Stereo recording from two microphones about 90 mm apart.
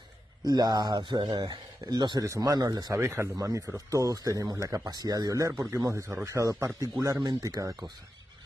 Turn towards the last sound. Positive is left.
turn(degrees=-45)  # may be behind; listen again after turning